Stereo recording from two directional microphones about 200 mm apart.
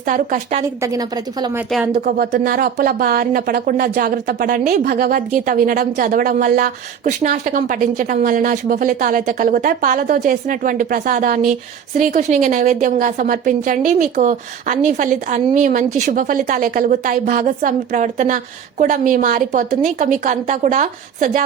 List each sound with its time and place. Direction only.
0.0 s a woman's voice: 40° right (ahead or behind)
0.8 s a woman's voice: 20° right (ahead or behind)
2.0 s a woman's voice: 45° right (ahead or behind)